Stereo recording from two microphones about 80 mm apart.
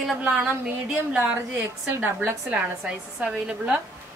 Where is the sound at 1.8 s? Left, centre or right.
Right.